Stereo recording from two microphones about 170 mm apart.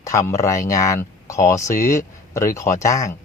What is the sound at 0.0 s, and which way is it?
Speech, 20° left (ahead or behind).